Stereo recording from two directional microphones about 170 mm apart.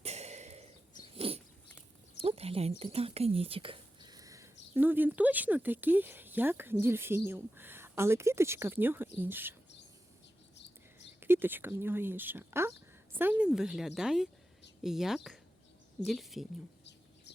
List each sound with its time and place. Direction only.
0.0 s a sound: 40° right (ahead or behind)
1.0 s dog: 35° right (ahead or behind)
2.1 s speech: 35° right (ahead or behind); by 9.6 s 10° right (ahead or behind)
11.2 s speech: 10° right (ahead or behind)